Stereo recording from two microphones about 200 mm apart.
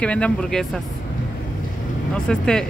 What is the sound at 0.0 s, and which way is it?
Speech, 5° left (ahead or behind).